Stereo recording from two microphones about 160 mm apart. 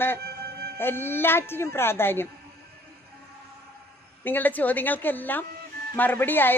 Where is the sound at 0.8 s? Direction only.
15° left (ahead or behind).